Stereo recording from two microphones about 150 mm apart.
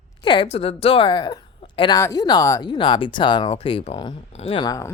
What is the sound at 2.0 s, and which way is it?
A woman's voice, 25° left (ahead or behind).